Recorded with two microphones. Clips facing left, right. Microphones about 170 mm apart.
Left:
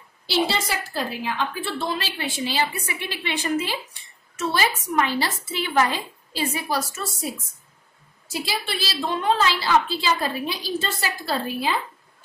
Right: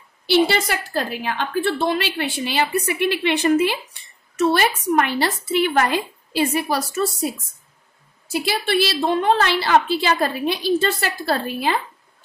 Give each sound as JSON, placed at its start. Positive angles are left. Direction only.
{"t": 0.3, "sound": "a woman's voice", "side_deg": -60}
{"t": 8.3, "sound": "a woman's voice", "side_deg": -60}